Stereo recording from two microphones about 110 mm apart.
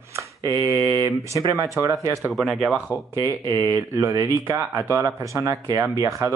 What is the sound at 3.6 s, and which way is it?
Speech, 35° right (ahead or behind).